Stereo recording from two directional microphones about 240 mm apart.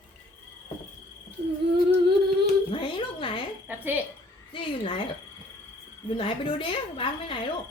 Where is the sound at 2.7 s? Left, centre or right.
Left.